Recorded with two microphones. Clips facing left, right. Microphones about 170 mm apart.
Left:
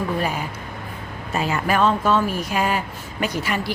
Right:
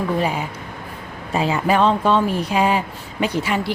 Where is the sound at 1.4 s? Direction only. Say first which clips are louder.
Right 3 dB; 25° right (ahead or behind).